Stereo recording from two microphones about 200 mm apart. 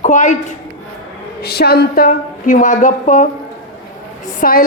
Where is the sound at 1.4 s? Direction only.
50° left (ahead or behind).